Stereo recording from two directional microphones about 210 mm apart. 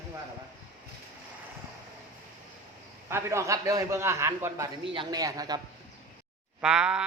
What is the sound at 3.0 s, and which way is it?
A man's voice, 10° right (ahead or behind).